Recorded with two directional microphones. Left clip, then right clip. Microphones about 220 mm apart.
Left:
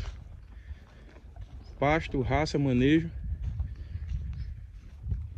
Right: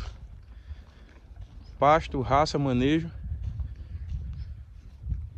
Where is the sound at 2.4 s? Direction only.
20° right (ahead or behind).